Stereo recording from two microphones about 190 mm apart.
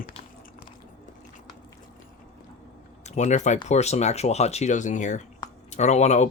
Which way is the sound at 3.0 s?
35° left (ahead or behind).